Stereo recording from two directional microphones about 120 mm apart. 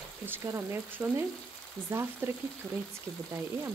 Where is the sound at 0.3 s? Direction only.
20° right (ahead or behind).